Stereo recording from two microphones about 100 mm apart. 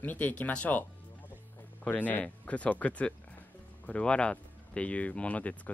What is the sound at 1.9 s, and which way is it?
Speech, 15° left (ahead or behind).